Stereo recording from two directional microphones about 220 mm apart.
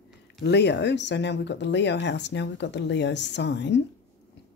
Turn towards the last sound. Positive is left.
turn(degrees=50)  # may be behind; listen again after turning